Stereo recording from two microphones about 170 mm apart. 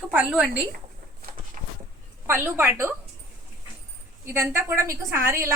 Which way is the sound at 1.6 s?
50° right (ahead or behind).